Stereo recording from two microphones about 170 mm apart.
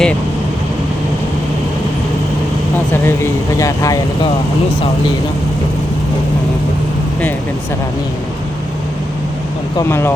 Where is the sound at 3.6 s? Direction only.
20° left (ahead or behind).